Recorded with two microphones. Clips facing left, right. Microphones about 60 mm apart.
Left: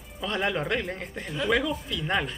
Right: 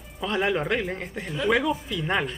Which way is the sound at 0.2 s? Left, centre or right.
Centre.